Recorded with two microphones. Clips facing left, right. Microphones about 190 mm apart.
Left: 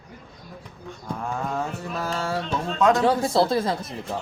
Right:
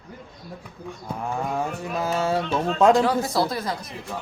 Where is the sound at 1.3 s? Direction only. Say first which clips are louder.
Right 2 dB; 15° right (ahead or behind).